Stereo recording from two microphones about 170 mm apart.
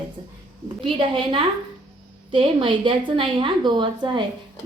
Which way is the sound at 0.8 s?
30° right (ahead or behind).